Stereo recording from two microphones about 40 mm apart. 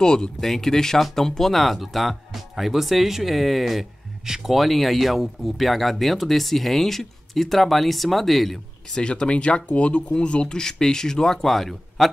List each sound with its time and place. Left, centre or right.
0.0 s speech: centre
8.8 s speech: left
10.5 s speech: centre